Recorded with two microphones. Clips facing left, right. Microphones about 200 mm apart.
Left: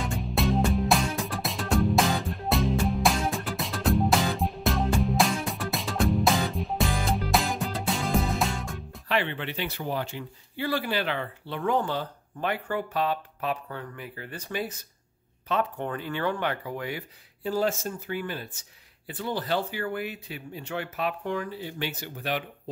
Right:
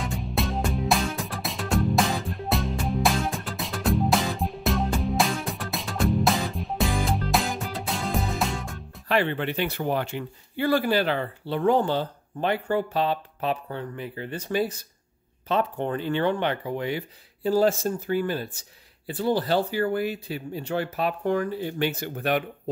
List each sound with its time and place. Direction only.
0.0 s music: centre (ahead or behind)
9.1 s speech: 45° right (ahead or behind)